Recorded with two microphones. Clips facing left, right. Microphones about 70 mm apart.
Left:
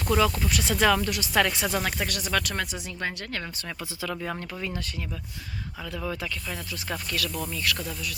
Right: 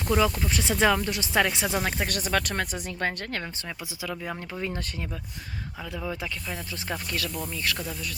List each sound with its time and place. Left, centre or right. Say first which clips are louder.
0.1 s speech: even; centre
2.0 s speech: right 1 dB; right
4.1 s speech: even; centre
6.0 s speech: left 1 dB; centre